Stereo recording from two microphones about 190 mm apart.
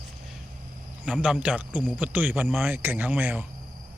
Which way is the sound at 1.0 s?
5° right (ahead or behind).